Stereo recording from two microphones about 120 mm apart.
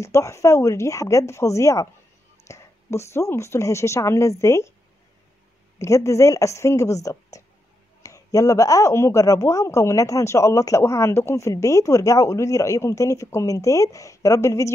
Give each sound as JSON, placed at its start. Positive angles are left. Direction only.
{"t": 0.0, "sound": "speech", "side_deg": 25}
{"t": 5.8, "sound": "speech", "side_deg": 25}